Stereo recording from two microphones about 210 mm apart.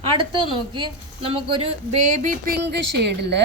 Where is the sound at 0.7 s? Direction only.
25° right (ahead or behind).